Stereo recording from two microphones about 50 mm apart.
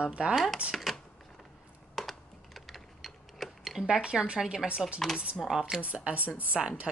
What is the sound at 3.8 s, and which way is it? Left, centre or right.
Speech, centre.